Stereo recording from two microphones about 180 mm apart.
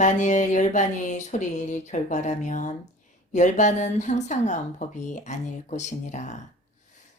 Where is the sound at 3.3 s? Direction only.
40° left (ahead or behind).